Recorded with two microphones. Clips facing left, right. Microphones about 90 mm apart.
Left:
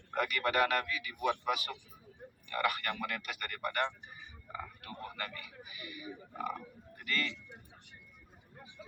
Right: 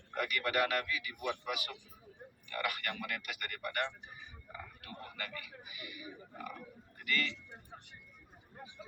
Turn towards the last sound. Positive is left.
turn(degrees=35)  # may be behind; listen again after turning